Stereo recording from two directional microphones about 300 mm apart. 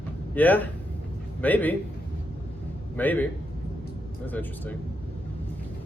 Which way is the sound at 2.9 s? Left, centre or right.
Centre.